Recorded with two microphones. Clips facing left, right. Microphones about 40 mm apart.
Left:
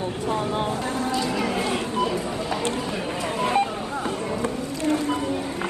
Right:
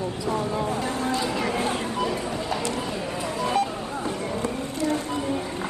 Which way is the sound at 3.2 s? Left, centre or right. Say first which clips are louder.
Left 2 dB; left.